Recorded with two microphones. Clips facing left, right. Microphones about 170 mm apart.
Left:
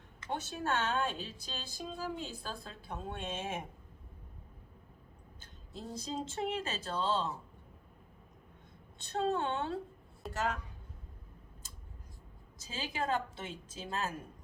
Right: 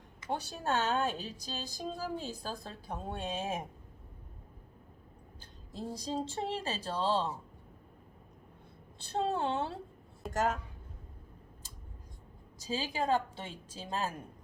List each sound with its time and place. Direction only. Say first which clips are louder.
0.3 s a woman's voice: right 1 dB; 35° right (ahead or behind)
5.4 s a woman's voice: right 4 dB; 35° right (ahead or behind)
9.0 s a woman's voice: even; 35° right (ahead or behind)
10.3 s speech: right 4 dB; 45° right (ahead or behind)
12.5 s a woman's voice: right 4 dB; 35° right (ahead or behind)